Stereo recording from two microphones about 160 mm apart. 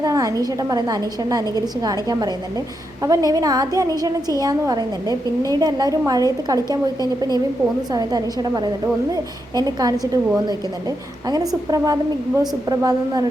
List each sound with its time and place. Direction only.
0.0 s a woman's voice: 20° right (ahead or behind)
7.9 s a woman's voice: 25° right (ahead or behind)